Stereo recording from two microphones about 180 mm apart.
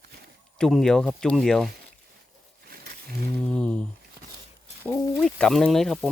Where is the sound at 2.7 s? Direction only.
60° right (ahead or behind).